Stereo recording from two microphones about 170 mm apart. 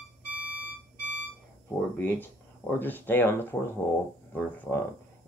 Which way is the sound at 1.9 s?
10° left (ahead or behind).